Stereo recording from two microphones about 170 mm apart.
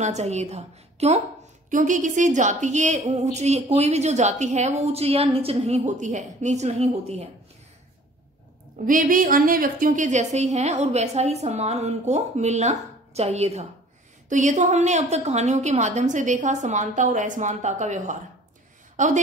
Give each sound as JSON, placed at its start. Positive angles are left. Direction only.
{"t": 0.0, "sound": "a woman's voice", "side_deg": -40}
{"t": 8.8, "sound": "a woman's voice", "side_deg": -50}